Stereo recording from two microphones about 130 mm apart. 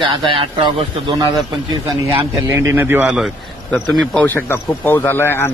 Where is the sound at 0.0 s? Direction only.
40° right (ahead or behind).